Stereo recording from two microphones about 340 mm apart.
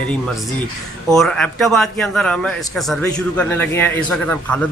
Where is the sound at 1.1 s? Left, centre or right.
Centre.